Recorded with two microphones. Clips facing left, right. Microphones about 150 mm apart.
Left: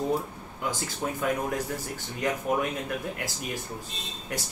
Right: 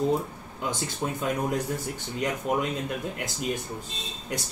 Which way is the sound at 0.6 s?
20° right (ahead or behind).